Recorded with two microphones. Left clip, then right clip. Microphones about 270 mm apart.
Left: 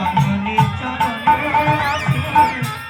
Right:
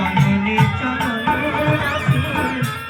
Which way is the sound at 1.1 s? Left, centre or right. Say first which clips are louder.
Left 7 dB; left.